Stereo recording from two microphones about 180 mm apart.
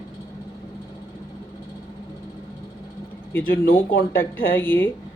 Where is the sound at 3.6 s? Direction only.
55° left (ahead or behind).